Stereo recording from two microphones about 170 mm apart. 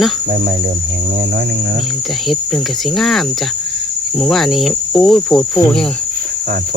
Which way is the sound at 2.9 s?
Centre (ahead or behind).